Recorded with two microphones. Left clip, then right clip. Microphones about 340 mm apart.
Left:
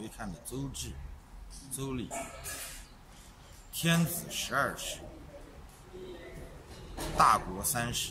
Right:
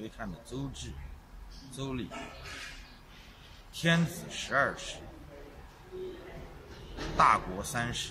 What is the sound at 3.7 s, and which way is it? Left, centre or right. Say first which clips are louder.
A man's voice: right 2 dB; centre.